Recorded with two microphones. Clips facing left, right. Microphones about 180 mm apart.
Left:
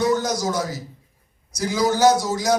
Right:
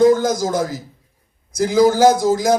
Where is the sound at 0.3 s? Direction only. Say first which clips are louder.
Right 5 dB; 50° right (ahead or behind).